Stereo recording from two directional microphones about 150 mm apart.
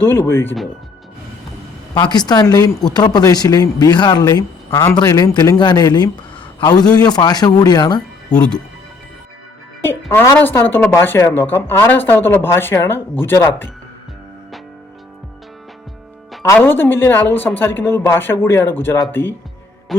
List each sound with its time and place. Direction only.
0.0 s speech: 15° left (ahead or behind)
2.0 s a man's voice: 30° left (ahead or behind)
8.3 s speech: 5° left (ahead or behind)
10.1 s speech: 15° left (ahead or behind)
16.4 s speech: 15° left (ahead or behind)
19.9 s music: centre (ahead or behind)